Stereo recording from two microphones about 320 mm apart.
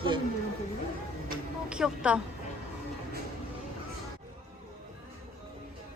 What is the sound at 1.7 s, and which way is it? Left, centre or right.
Speech, centre.